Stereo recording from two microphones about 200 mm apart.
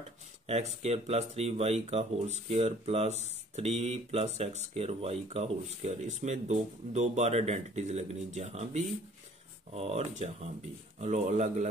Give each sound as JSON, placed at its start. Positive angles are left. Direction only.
{"t": 0.5, "sound": "speech", "side_deg": -30}